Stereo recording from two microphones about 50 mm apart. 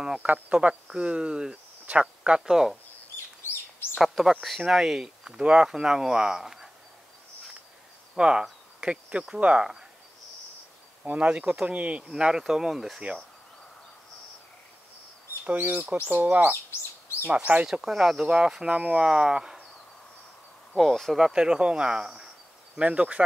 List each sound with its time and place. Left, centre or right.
0.2 s speech: right
2.4 s speech: centre
4.0 s speech: centre
5.3 s speech: right
8.2 s speech: centre
11.1 s speech: right
12.1 s speech: centre
15.4 s speech: right
17.8 s speech: centre
18.2 s speech: centre
19.0 s speech: centre
20.7 s speech: centre
21.2 s speech: centre
22.8 s speech: right